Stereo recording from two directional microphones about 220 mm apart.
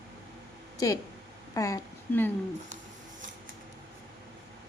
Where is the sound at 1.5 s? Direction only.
15° left (ahead or behind).